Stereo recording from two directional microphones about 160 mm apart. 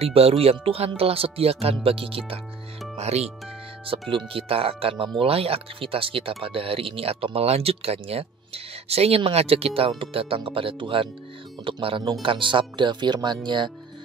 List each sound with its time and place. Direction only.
0.0 s speech: 40° right (ahead or behind)